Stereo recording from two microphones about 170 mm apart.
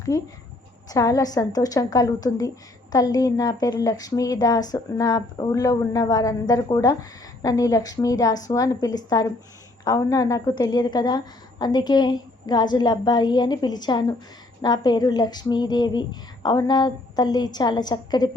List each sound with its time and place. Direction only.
0.1 s a woman's voice: 20° left (ahead or behind)